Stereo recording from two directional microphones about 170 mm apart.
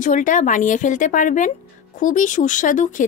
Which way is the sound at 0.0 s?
50° left (ahead or behind).